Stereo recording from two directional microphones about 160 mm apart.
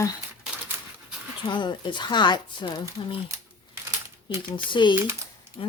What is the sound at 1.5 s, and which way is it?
Speech, 30° left (ahead or behind).